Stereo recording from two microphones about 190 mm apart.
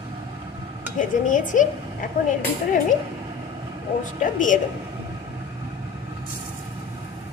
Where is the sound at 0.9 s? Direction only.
45° left (ahead or behind).